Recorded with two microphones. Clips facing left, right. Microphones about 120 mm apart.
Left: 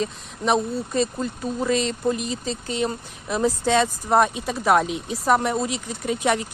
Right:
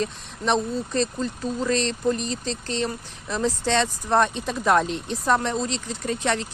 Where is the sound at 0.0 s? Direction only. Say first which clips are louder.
Left 1 dB; 5° left (ahead or behind).